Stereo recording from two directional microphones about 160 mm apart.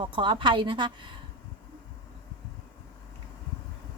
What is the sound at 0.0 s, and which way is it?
A woman's voice, 30° right (ahead or behind).